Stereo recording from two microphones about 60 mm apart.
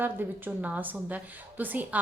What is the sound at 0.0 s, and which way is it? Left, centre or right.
A woman's voice, right.